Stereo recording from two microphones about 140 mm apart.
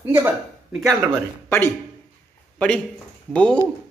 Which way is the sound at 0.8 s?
20° right (ahead or behind).